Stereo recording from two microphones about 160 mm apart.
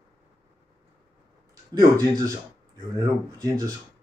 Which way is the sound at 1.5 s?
20° right (ahead or behind).